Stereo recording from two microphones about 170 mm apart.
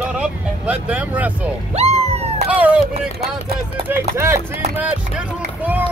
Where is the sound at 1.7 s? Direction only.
40° right (ahead or behind).